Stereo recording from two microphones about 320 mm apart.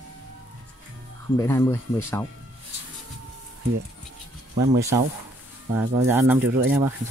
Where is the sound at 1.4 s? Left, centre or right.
Centre.